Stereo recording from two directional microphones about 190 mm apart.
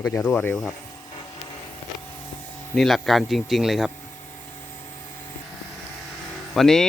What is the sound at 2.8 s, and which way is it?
Speech, centre (ahead or behind).